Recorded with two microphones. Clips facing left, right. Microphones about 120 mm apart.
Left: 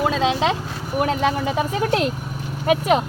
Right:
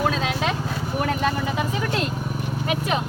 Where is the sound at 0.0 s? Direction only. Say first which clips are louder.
Left 4 dB; 20° left (ahead or behind).